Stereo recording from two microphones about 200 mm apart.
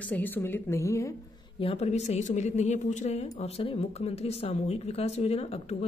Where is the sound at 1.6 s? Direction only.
30° left (ahead or behind).